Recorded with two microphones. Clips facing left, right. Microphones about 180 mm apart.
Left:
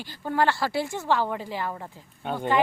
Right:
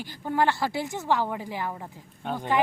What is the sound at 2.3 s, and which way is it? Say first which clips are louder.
Speech: left 1 dB; centre (ahead or behind).